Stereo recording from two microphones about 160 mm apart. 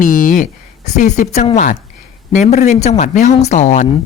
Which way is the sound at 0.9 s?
50° left (ahead or behind).